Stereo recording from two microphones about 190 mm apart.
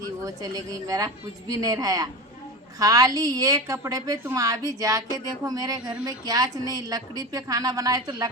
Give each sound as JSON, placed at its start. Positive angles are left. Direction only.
{"t": 0.3, "sound": "a woman's voice", "side_deg": -20}